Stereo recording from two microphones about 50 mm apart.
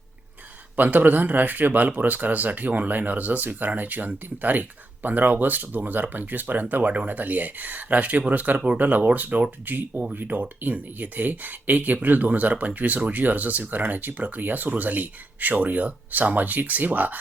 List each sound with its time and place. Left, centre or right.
0.8 s speech: right